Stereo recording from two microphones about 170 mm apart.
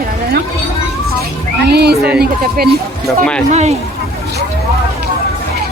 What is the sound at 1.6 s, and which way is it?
Speech, 70° right (ahead or behind).